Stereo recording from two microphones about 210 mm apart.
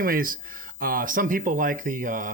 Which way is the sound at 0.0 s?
45° right (ahead or behind).